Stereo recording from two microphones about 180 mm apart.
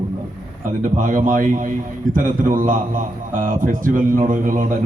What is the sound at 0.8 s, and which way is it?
A man's voice, 50° right (ahead or behind).